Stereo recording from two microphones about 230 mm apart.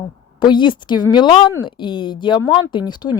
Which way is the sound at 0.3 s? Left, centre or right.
Centre.